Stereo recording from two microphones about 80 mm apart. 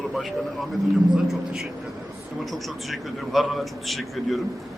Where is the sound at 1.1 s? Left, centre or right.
Centre.